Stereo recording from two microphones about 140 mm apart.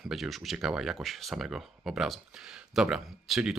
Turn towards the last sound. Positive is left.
turn(degrees=0)  # may be behind; listen again after turning